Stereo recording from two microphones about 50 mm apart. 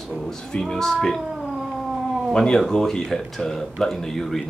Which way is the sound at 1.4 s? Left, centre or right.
Centre.